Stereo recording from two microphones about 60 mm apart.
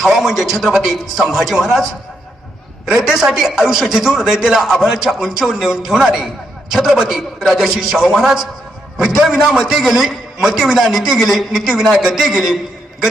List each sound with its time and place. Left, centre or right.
0.0 s a man's voice: centre
2.8 s a man's voice: centre